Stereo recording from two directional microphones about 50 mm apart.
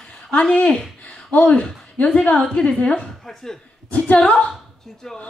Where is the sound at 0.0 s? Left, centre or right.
Centre.